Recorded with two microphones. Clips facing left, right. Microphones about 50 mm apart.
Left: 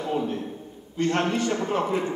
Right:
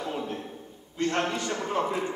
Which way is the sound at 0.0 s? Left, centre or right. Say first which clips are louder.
Left 5 dB; centre.